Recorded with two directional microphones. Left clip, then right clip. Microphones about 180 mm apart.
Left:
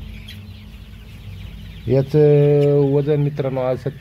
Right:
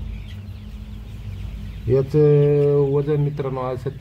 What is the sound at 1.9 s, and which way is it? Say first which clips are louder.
Speech: left 2 dB; 35° left (ahead or behind).